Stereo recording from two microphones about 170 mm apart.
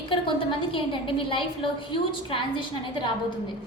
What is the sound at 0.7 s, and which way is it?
A woman's voice, 30° left (ahead or behind).